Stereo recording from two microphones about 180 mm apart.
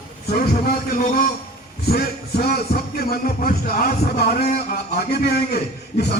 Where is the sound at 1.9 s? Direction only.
60° left (ahead or behind).